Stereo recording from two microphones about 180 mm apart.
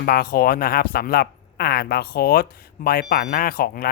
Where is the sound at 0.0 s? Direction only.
55° left (ahead or behind).